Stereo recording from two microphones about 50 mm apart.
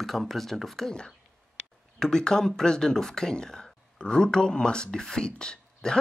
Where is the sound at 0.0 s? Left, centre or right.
Centre.